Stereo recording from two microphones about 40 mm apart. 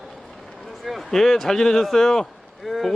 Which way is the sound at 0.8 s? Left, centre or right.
Centre.